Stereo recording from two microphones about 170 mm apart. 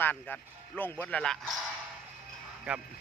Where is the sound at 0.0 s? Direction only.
10° left (ahead or behind).